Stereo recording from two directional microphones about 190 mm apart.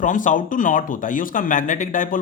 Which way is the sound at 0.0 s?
40° left (ahead or behind).